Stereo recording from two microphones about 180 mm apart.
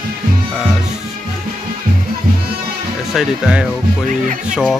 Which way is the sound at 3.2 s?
5° right (ahead or behind).